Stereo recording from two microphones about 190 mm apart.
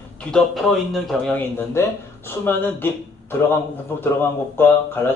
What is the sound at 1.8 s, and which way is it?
Speech, 15° left (ahead or behind).